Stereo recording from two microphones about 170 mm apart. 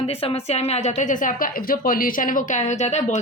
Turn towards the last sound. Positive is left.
turn(degrees=40)  # may be behind; listen again after turning